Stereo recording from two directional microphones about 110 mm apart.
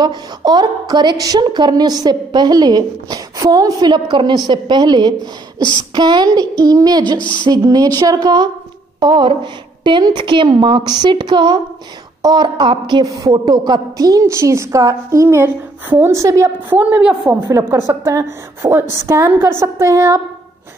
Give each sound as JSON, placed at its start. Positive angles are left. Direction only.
{"t": 0.0, "sound": "a woman's voice", "side_deg": -40}
{"t": 5.6, "sound": "speech", "side_deg": 45}
{"t": 5.9, "sound": "a woman's voice", "side_deg": -40}
{"t": 16.7, "sound": "a woman's voice", "side_deg": -15}
{"t": 17.4, "sound": "a woman's voice", "side_deg": -25}